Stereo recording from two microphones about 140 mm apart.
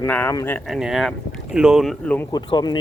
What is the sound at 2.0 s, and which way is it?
Speech, 10° left (ahead or behind).